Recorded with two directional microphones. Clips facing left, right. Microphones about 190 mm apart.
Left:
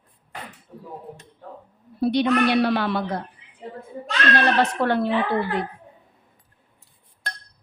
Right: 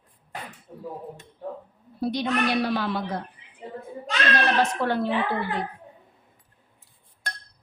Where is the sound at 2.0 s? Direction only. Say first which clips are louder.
Left 6 dB; 65° left (ahead or behind).